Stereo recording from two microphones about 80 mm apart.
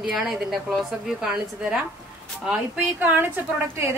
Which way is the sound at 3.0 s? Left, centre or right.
Right.